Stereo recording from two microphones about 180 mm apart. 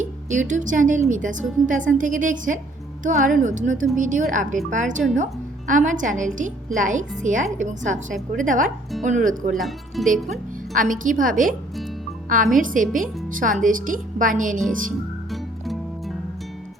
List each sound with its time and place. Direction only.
0.0 s a woman's voice: 40° right (ahead or behind)
9.6 s speech: centre (ahead or behind)
10.8 s a woman's voice: 45° right (ahead or behind)
15.3 s music: centre (ahead or behind)